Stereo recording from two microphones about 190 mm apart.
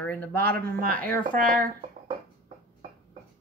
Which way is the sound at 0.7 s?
45° right (ahead or behind).